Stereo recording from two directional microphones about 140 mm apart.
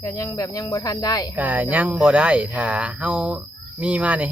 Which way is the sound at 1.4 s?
10° right (ahead or behind).